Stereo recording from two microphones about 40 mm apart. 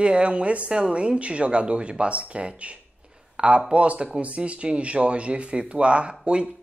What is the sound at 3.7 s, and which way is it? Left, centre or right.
Speech, right.